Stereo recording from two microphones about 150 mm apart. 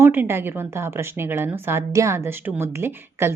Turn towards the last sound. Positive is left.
turn(degrees=-15)  # may be behind; listen again after turning